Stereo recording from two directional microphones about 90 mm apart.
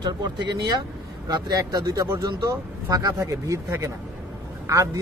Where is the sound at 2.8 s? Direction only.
40° right (ahead or behind).